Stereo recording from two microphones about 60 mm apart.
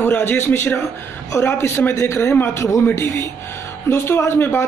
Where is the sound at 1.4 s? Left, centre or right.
Left.